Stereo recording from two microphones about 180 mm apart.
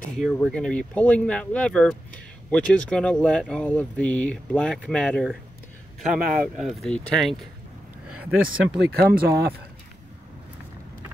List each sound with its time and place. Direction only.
0.2 s speech: centre (ahead or behind)
6.1 s speech: 50° right (ahead or behind)
6.5 s speech: centre (ahead or behind)
8.7 s speech: 65° right (ahead or behind)